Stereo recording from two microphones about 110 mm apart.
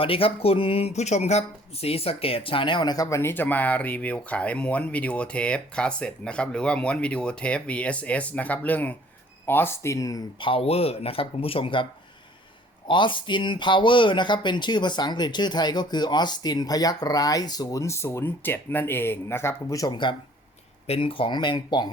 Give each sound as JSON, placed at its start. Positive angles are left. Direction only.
{"t": 0.0, "sound": "speech", "side_deg": 55}
{"t": 3.2, "sound": "speech", "side_deg": 20}
{"t": 10.4, "sound": "speech", "side_deg": 60}
{"t": 12.9, "sound": "speech", "side_deg": 45}
{"t": 19.9, "sound": "speech", "side_deg": 45}
{"t": 20.8, "sound": "speech", "side_deg": 60}